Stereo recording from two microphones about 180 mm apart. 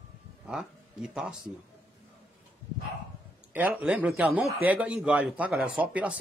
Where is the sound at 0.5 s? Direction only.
5° right (ahead or behind).